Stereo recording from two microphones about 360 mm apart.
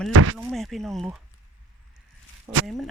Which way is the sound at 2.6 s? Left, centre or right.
Centre.